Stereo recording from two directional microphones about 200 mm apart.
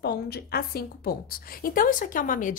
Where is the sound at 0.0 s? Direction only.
50° left (ahead or behind).